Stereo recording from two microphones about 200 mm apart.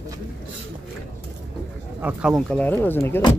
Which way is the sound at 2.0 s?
5° right (ahead or behind).